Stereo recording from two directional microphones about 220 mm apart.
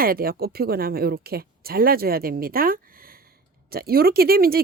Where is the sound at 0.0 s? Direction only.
40° right (ahead or behind).